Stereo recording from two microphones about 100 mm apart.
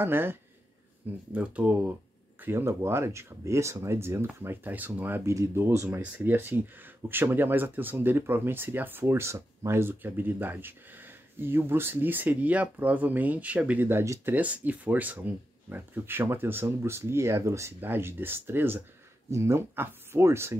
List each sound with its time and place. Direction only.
0.0 s speech: 20° right (ahead or behind)
14.3 s speech: 15° right (ahead or behind)